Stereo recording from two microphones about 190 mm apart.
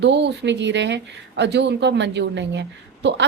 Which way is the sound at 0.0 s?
65° right (ahead or behind).